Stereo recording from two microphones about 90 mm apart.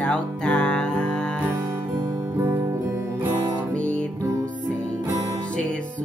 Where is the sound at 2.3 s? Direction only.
25° right (ahead or behind).